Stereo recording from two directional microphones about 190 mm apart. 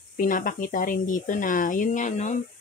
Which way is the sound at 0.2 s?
45° left (ahead or behind).